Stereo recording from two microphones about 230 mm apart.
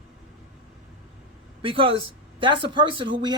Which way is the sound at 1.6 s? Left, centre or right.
Right.